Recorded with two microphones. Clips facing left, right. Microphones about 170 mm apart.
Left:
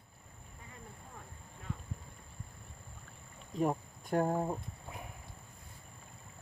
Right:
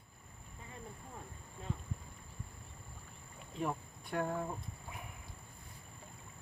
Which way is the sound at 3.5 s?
40° left (ahead or behind).